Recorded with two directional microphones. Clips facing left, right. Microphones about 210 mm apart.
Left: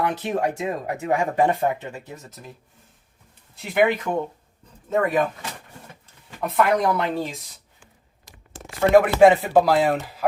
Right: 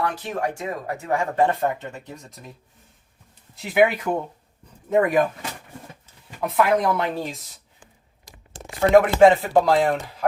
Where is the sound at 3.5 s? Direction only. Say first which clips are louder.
Right 1 dB; centre (ahead or behind).